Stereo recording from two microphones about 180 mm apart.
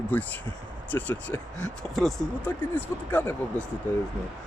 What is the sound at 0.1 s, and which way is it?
Speech, 10° left (ahead or behind).